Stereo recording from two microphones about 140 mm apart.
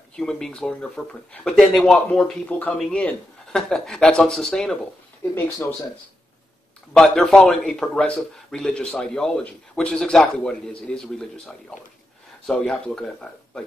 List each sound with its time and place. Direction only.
0.1 s a man's voice: 5° left (ahead or behind)
5.3 s speech: 15° left (ahead or behind)
6.9 s a man's voice: centre (ahead or behind)